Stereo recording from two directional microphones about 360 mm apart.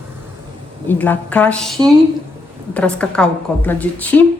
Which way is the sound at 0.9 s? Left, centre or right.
Centre.